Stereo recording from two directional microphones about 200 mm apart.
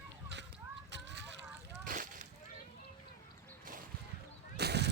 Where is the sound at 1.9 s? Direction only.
40° right (ahead or behind).